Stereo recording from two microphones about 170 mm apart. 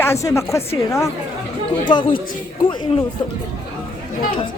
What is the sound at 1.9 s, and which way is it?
Speech, 30° left (ahead or behind).